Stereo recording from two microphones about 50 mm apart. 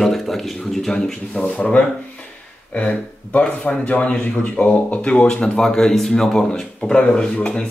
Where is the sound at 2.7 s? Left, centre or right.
Left.